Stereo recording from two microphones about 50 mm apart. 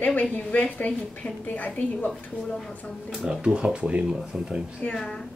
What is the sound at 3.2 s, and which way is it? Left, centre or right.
Speech, centre.